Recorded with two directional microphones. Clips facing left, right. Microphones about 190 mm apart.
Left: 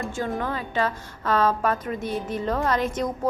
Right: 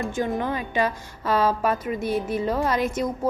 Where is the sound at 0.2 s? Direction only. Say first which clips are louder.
Right 2 dB; 15° right (ahead or behind).